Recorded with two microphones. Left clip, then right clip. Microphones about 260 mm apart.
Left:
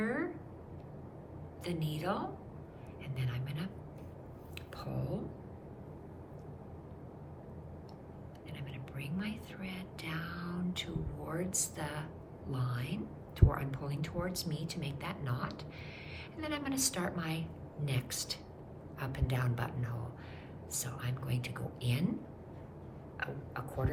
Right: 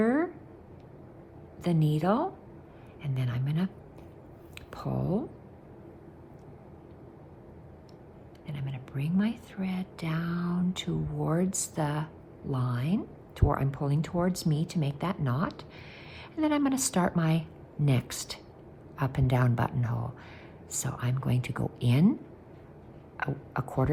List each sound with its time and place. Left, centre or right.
0.0 s a sound: centre
1.6 s speech: centre
4.7 s speech: right
8.5 s speech: centre
23.1 s speech: right